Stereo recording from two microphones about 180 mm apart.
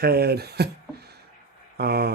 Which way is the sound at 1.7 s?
60° right (ahead or behind).